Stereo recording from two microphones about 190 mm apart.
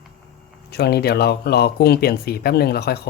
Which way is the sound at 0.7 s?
60° left (ahead or behind).